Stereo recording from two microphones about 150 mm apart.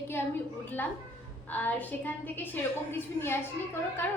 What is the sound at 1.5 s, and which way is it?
A woman's voice, 10° left (ahead or behind).